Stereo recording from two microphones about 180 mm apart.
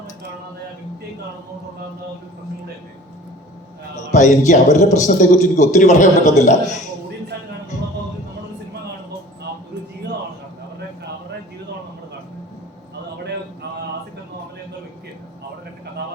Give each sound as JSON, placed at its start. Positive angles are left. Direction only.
{"t": 3.9, "sound": "a man's voice", "side_deg": 40}